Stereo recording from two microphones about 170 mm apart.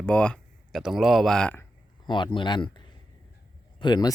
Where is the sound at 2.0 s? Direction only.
25° left (ahead or behind).